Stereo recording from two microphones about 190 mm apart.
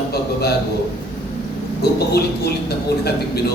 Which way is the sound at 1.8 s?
60° left (ahead or behind).